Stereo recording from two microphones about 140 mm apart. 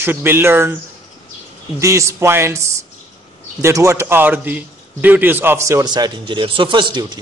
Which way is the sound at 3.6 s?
20° right (ahead or behind).